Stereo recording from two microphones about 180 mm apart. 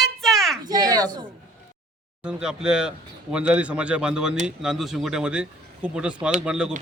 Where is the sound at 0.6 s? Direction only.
20° right (ahead or behind).